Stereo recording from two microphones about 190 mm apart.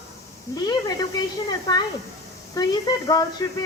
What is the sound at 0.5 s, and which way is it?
Speech, 20° left (ahead or behind).